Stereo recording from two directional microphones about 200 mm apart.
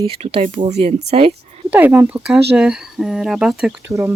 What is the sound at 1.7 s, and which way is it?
Speech, 10° right (ahead or behind).